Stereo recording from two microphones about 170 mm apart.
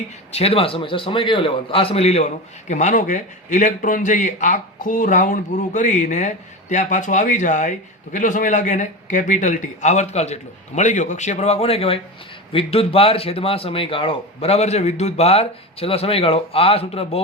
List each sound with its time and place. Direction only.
0.3 s a man's voice: 35° left (ahead or behind)